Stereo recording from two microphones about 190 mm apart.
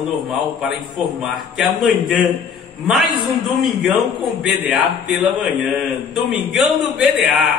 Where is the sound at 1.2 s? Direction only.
Centre (ahead or behind).